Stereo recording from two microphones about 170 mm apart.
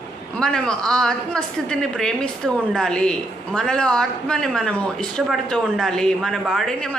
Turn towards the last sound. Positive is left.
turn(degrees=5)  # may be behind; listen again after turning